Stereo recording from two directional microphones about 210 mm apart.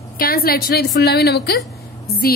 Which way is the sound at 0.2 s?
45° left (ahead or behind).